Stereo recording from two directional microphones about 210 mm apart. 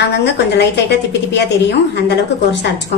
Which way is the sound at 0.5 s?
55° left (ahead or behind).